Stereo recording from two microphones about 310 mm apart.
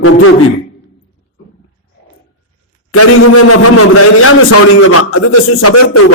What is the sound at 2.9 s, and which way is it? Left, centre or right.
A man's voice, left.